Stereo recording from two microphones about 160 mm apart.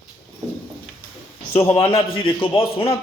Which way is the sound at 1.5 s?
15° left (ahead or behind).